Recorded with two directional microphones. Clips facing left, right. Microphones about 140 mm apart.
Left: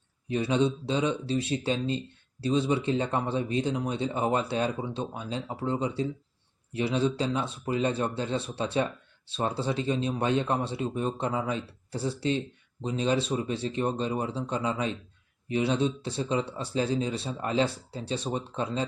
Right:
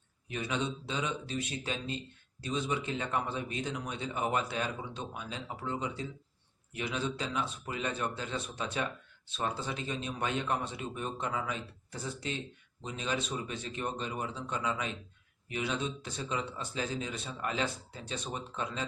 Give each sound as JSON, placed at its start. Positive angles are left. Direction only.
{"t": 0.3, "sound": "speech", "side_deg": 30}